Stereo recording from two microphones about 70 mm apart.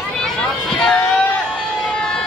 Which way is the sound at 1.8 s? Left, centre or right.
Centre.